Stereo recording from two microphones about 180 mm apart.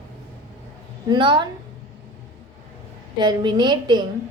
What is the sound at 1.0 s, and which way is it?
Speech, 25° right (ahead or behind).